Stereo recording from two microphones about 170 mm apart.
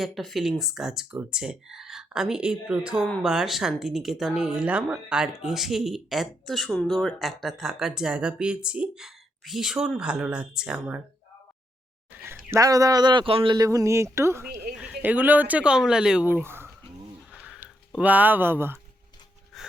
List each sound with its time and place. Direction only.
0.0 s speech: centre (ahead or behind)
12.5 s speech: 20° right (ahead or behind)
17.3 s a sound: 5° right (ahead or behind)
19.5 s gasp: centre (ahead or behind)